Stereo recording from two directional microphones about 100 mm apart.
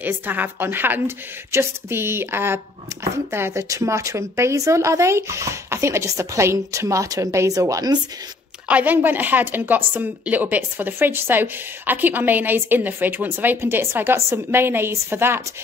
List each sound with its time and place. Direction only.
0.0 s a woman's voice: 20° right (ahead or behind); by 8.0 s 40° right (ahead or behind)
8.6 s a woman's voice: 15° right (ahead or behind)